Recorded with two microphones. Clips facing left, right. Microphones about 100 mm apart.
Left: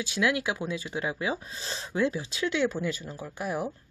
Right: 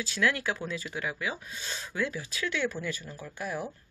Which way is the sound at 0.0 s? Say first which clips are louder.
Left 2 dB; 20° left (ahead or behind).